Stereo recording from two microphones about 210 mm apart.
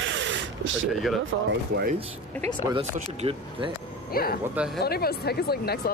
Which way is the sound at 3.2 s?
25° right (ahead or behind).